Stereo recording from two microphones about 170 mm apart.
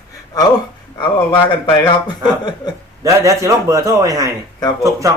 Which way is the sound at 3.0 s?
20° right (ahead or behind).